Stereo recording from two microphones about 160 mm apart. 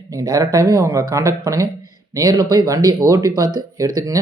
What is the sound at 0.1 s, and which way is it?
Speech, 20° right (ahead or behind).